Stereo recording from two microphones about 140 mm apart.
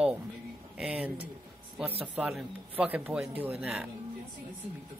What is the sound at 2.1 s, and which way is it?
Speech, 5° right (ahead or behind).